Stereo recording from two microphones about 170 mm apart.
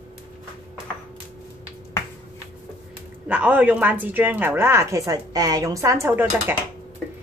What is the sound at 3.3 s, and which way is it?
A woman's voice, 10° right (ahead or behind).